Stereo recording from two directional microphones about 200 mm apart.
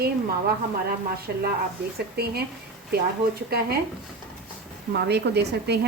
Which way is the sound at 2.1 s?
50° right (ahead or behind).